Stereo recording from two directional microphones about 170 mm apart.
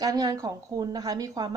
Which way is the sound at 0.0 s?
20° right (ahead or behind).